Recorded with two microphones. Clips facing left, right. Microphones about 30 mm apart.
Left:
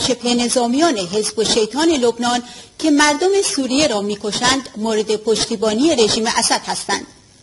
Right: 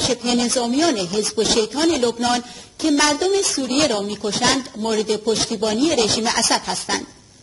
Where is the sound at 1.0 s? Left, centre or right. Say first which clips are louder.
Left 2 dB; centre.